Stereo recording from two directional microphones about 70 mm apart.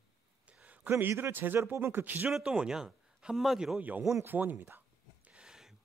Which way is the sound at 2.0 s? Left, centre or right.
Right.